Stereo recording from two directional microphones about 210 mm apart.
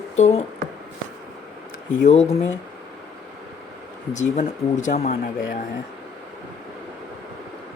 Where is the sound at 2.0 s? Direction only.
30° left (ahead or behind).